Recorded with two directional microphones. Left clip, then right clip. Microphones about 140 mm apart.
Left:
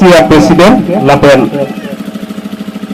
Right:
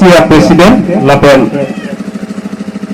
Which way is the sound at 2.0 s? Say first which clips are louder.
Right 1 dB; 20° left (ahead or behind).